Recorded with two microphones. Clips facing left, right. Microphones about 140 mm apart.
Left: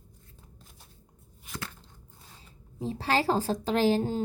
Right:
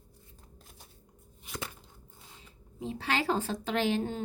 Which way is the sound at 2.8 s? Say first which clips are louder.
Left 4 dB; 35° left (ahead or behind).